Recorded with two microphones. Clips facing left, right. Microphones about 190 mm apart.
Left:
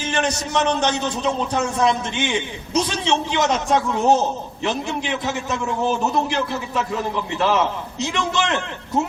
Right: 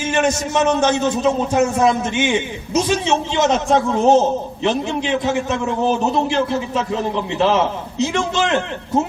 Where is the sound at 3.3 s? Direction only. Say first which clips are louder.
Right 5 dB; 20° right (ahead or behind).